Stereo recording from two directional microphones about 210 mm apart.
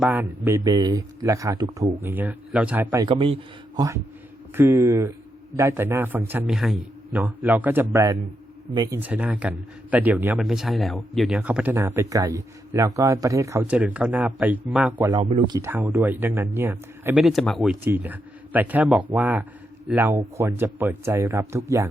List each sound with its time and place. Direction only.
0.0 s speech: 10° right (ahead or behind)
2.0 s speech: 10° right (ahead or behind)
9.0 s speech: 5° right (ahead or behind)